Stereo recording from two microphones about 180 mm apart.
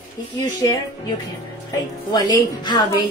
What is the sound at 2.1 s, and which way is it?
Speech, 25° left (ahead or behind).